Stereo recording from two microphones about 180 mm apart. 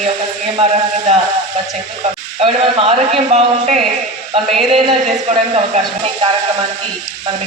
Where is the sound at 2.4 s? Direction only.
30° right (ahead or behind).